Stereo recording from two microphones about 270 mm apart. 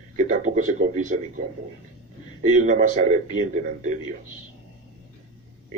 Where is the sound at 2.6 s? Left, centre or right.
Right.